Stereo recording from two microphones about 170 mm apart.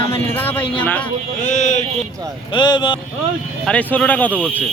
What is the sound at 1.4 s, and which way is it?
Speech, 45° left (ahead or behind).